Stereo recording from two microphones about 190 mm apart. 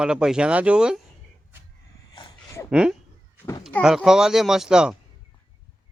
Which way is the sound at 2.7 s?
5° right (ahead or behind).